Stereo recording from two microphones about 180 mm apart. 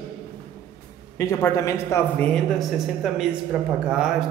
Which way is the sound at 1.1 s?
15° left (ahead or behind).